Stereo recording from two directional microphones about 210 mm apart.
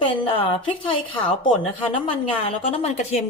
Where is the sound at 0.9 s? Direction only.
25° left (ahead or behind).